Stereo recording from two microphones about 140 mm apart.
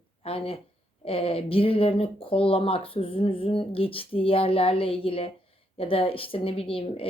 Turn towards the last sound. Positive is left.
turn(degrees=40)  # may be behind; listen again after turning